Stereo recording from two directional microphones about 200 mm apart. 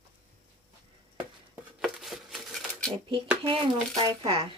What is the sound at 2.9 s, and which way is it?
Speech, 25° right (ahead or behind).